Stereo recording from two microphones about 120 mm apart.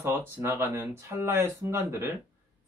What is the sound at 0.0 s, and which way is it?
Speech, 20° right (ahead or behind).